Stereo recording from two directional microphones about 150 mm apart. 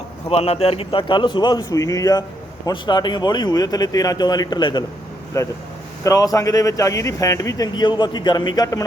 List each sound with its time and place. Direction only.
0.3 s a man's voice: 40° left (ahead or behind); by 8.8 s 25° left (ahead or behind)